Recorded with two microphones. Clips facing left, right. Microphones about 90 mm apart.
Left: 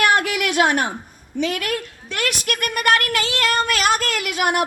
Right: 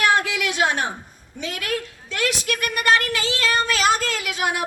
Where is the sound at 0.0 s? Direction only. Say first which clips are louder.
Left 2 dB; 65° left (ahead or behind).